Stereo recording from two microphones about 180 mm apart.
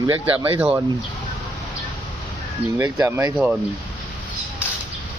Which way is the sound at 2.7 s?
15° right (ahead or behind).